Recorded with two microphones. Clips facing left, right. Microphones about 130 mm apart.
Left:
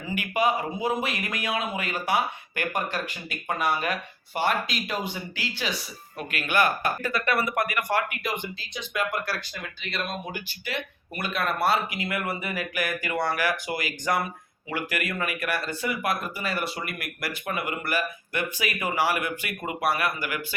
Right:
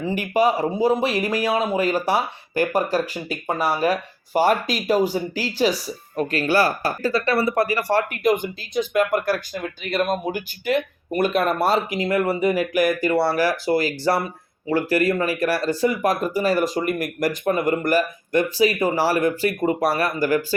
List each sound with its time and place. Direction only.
0.0 s speech: 35° right (ahead or behind)